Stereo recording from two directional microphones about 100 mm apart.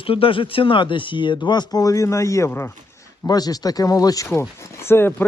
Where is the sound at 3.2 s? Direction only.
40° left (ahead or behind); by 5.2 s 25° left (ahead or behind).